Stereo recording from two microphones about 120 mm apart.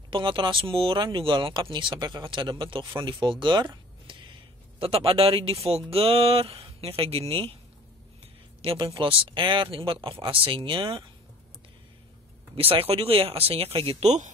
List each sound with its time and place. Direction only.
0.1 s speech: 45° right (ahead or behind)
8.6 s speech: 50° right (ahead or behind)
12.5 s speech: 50° right (ahead or behind); by 14.3 s 70° right (ahead or behind)